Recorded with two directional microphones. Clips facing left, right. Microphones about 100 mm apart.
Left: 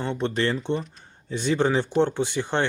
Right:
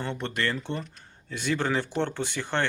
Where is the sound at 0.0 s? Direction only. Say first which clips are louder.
Left 5 dB; 15° left (ahead or behind).